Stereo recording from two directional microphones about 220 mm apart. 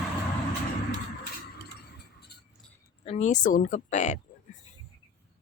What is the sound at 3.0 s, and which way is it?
Speech, 30° left (ahead or behind).